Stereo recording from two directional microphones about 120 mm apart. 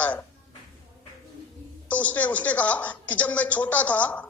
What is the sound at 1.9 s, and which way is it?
Speech, 10° left (ahead or behind).